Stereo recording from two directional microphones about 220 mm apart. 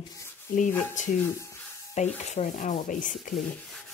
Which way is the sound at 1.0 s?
35° left (ahead or behind).